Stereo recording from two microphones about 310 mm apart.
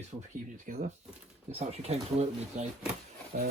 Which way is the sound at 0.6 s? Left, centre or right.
Right.